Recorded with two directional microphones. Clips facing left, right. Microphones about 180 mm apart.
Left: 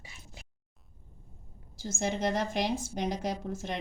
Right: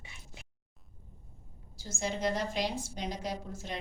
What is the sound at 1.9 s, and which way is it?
Speech, 50° left (ahead or behind).